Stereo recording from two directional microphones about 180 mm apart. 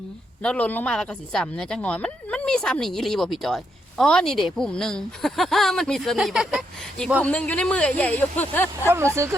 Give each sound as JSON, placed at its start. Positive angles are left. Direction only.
{"t": 0.4, "sound": "speech", "side_deg": 10}
{"t": 8.9, "sound": "speech", "side_deg": -15}